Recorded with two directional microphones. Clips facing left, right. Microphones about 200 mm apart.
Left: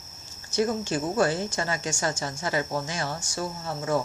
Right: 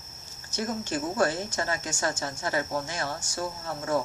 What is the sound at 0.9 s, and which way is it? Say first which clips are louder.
Speech: left 2 dB; 25° left (ahead or behind).